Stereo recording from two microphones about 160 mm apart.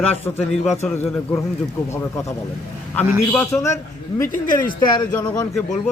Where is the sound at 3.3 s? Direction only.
15° left (ahead or behind).